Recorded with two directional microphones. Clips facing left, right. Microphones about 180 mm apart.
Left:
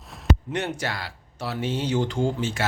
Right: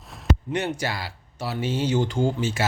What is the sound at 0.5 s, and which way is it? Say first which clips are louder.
Speech: right 2 dB; centre (ahead or behind).